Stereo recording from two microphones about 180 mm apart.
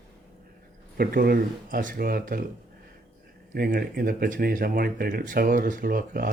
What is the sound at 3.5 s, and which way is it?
Speech, 55° right (ahead or behind).